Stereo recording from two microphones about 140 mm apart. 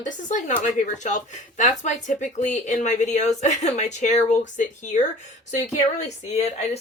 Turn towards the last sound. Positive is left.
turn(degrees=50)  # may be behind; listen again after turning